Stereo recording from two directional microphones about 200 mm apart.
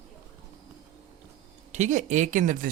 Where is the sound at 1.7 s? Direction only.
35° right (ahead or behind).